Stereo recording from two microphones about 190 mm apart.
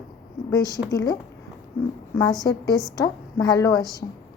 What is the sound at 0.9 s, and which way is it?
Speech, 20° left (ahead or behind).